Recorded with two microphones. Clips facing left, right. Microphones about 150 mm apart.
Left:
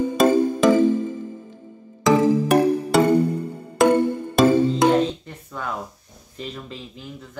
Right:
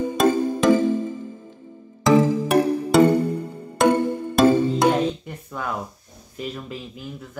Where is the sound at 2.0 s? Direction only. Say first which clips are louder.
Left 1 dB; centre (ahead or behind).